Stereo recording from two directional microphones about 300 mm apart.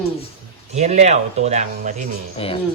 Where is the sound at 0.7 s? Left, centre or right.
Right.